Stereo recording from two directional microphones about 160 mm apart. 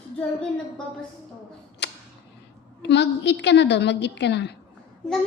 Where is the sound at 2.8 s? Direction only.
90° left.